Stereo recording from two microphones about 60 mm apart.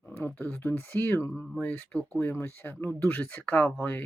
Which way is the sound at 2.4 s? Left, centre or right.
Left.